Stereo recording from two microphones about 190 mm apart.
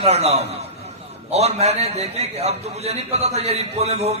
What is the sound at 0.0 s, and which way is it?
A man's voice, 35° right (ahead or behind).